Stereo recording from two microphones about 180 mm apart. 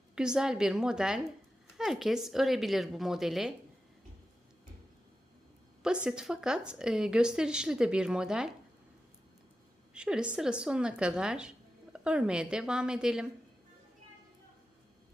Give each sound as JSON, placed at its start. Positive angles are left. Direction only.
{"t": 0.2, "sound": "a woman's voice", "side_deg": -5}
{"t": 5.8, "sound": "a woman's voice", "side_deg": -5}
{"t": 9.9, "sound": "a woman's voice", "side_deg": -5}